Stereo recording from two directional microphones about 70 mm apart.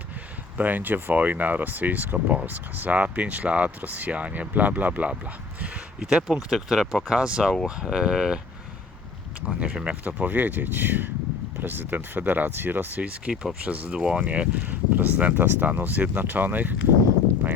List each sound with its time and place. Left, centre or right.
0.5 s speech: right; by 8.4 s centre
9.6 s speech: centre
13.3 s speech: centre
13.7 s speech: centre